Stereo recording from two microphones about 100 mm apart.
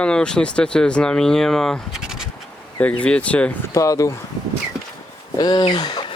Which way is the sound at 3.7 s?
35° left (ahead or behind).